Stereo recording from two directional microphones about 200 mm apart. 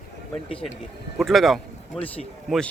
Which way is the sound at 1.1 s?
Centre (ahead or behind).